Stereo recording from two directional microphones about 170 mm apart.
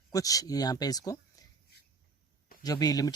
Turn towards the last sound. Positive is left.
turn(degrees=20)  # may be behind; listen again after turning